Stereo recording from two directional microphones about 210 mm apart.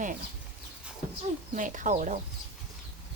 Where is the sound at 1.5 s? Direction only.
35° right (ahead or behind).